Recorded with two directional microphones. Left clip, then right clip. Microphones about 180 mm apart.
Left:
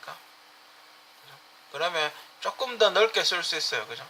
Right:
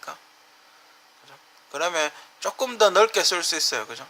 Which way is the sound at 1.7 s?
45° right (ahead or behind).